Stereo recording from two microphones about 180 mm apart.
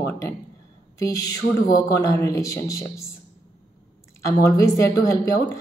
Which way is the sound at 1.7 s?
20° left (ahead or behind).